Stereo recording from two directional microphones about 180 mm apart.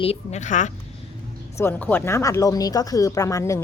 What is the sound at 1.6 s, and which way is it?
Speech, 10° left (ahead or behind).